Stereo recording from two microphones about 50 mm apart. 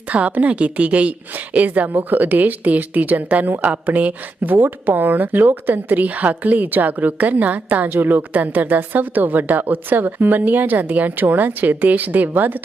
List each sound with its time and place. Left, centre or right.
0.1 s a woman's voice: right